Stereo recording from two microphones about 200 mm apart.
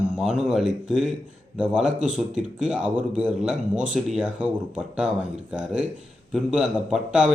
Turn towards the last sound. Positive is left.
turn(degrees=-5)  # may be behind; listen again after turning